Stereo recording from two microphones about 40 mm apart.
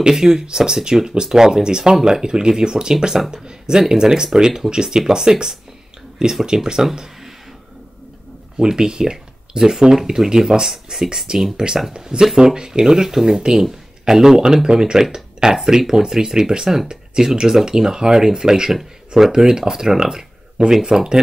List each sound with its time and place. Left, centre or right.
0.0 s speech: centre
3.4 s a sound: centre
3.9 s speech: centre
8.5 s speech: centre
18.7 s speech: centre